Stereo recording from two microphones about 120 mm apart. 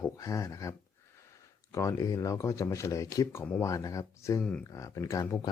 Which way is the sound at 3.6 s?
25° left (ahead or behind).